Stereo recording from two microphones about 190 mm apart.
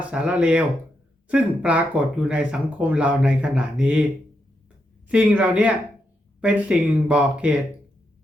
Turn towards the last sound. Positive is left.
turn(degrees=-5)  # may be behind; listen again after turning